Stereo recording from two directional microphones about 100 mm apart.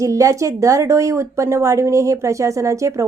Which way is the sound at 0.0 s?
30° right (ahead or behind).